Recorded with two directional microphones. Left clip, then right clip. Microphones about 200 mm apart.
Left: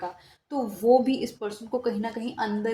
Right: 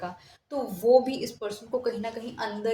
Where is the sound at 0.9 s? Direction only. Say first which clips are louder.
Right 2 dB; 25° left (ahead or behind).